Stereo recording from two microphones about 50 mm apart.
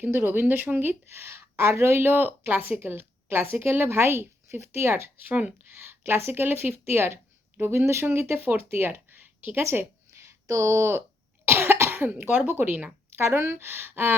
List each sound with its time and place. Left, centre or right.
0.0 s a woman's voice: right
2.0 s a woman's voice: right
5.2 s speech: right
5.9 s a woman's voice: right
8.4 s speech: right
10.2 s speech: right
11.4 s cough: right
12.5 s a woman's voice: right
13.1 s a woman's voice: right